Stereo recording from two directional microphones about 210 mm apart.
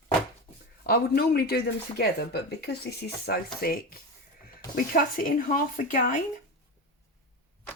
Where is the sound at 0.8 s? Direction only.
45° left (ahead or behind).